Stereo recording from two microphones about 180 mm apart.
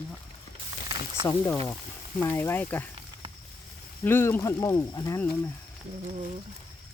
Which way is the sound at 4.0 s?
10° left (ahead or behind).